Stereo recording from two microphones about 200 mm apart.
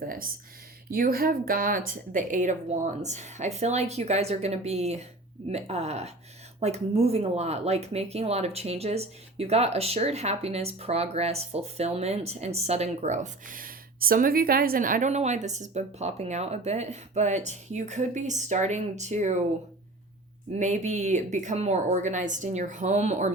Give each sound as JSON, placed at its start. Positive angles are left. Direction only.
{"t": 0.0, "sound": "speech", "side_deg": -45}
{"t": 20.6, "sound": "speech", "side_deg": -35}